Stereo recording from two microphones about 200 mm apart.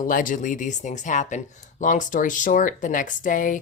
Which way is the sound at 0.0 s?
40° left (ahead or behind).